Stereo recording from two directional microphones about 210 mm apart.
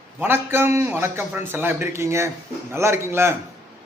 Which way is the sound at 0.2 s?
10° right (ahead or behind).